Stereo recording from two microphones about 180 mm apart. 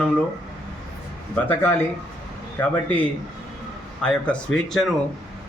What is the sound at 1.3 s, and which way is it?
A man's voice, 10° left (ahead or behind).